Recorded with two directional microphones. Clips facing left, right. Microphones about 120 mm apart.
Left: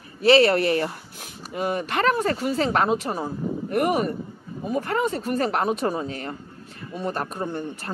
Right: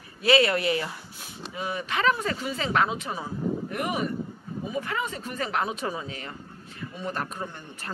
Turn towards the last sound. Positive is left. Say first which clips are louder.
# left 8 dB
turn(degrees=35)  # may be behind; listen again after turning